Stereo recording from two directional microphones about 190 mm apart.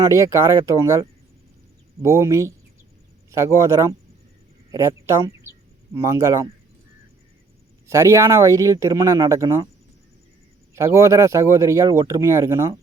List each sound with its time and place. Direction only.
0.1 s speech: 15° right (ahead or behind)
7.9 s speech: 15° right (ahead or behind)
10.8 s speech: 15° right (ahead or behind)